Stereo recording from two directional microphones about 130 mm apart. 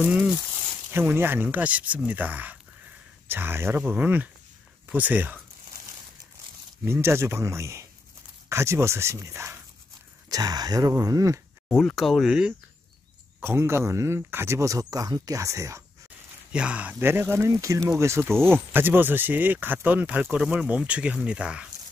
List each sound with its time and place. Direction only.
0.0 s speech: 10° right (ahead or behind)
6.8 s speech: 20° right (ahead or behind)
11.7 s speech: centre (ahead or behind)
13.4 s speech: 20° right (ahead or behind)
16.5 s speech: 10° right (ahead or behind)